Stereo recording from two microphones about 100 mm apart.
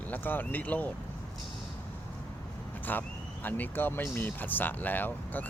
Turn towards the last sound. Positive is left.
turn(degrees=20)  # may be behind; listen again after turning